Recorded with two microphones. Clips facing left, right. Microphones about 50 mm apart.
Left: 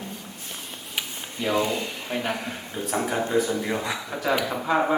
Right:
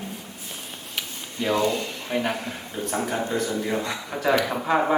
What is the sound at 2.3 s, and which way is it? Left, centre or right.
A man's voice, centre.